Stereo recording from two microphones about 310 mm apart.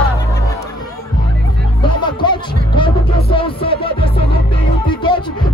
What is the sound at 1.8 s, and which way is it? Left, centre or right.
Music, centre.